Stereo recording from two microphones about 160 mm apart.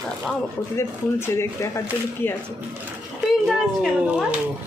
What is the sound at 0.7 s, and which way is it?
A woman's voice, 15° left (ahead or behind).